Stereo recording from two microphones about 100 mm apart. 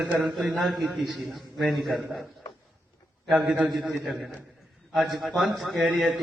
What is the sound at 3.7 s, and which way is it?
A man's voice, centre (ahead or behind).